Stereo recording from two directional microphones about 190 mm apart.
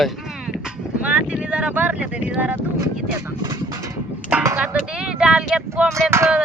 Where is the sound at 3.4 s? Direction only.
20° right (ahead or behind).